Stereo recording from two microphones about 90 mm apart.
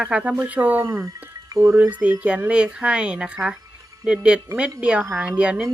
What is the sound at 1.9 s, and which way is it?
Speech, 15° right (ahead or behind).